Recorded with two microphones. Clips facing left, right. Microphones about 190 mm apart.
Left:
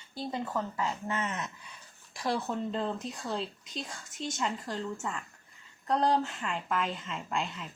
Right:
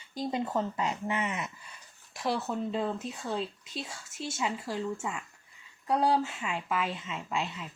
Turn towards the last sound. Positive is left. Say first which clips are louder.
# right 1 dB
turn(degrees=-5)  # may be behind; listen again after turning